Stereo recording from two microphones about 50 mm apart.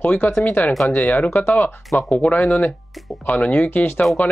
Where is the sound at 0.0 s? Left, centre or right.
Left.